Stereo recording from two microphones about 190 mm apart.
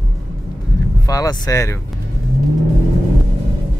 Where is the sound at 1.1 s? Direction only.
20° left (ahead or behind).